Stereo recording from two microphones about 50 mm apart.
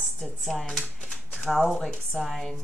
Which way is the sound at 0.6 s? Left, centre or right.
Centre.